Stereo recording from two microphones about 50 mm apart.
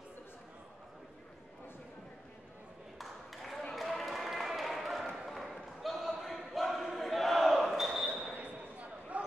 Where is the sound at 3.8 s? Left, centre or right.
Centre.